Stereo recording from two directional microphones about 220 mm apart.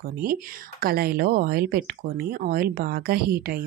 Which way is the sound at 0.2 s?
40° right (ahead or behind).